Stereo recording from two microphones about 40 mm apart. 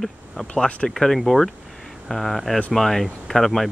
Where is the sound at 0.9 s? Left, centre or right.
Centre.